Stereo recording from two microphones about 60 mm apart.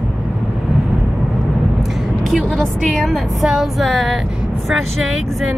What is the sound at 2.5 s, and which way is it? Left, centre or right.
Speech, centre.